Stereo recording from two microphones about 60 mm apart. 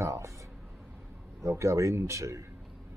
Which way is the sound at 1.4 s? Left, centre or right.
Right.